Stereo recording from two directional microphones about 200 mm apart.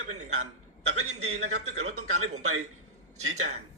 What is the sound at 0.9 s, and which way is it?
Speech, 90° right.